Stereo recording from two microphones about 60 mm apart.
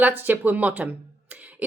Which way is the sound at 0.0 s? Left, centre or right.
Right.